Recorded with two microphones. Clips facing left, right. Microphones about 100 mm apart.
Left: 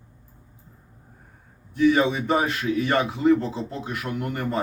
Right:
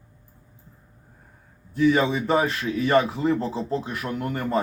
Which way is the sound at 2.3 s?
30° right (ahead or behind).